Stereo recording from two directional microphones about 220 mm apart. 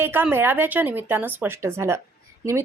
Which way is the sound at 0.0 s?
10° right (ahead or behind).